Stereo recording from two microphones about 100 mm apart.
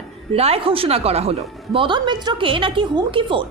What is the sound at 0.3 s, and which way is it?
A woman's voice, 85° right.